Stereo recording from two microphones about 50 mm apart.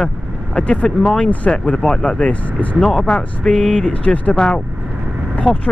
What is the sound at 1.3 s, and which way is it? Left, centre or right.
Speech, left.